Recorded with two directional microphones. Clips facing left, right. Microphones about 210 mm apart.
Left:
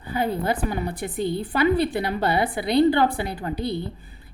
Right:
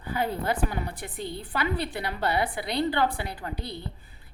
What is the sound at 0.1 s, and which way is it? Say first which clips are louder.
A woman's voice: left 4 dB; 15° left (ahead or behind).